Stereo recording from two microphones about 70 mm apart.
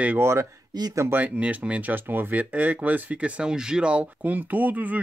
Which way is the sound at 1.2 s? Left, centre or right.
Centre.